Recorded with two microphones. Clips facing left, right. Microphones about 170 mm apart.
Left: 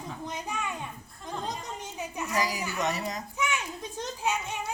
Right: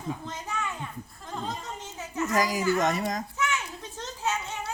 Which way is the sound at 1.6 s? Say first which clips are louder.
Left 1 dB; 15° left (ahead or behind).